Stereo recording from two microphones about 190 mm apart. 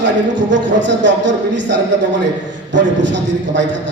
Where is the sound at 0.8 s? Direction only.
70° right (ahead or behind).